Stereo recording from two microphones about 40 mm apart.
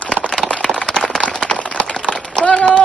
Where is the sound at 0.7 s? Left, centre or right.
Centre.